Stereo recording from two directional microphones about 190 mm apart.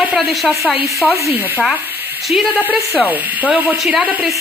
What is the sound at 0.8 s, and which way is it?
Speech, 15° right (ahead or behind).